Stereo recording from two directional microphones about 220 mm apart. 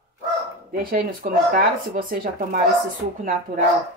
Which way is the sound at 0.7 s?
40° right (ahead or behind).